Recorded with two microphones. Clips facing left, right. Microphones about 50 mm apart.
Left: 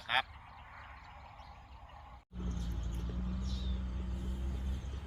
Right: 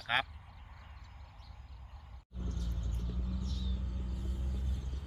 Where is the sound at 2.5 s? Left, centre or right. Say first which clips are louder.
Even; left.